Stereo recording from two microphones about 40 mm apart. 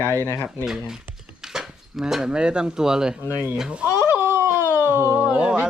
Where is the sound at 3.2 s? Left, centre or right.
Right.